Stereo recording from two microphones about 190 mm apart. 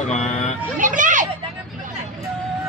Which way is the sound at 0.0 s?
35° left (ahead or behind).